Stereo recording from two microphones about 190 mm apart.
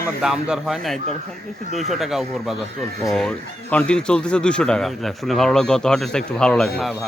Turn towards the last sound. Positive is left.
turn(degrees=5)  # may be behind; listen again after turning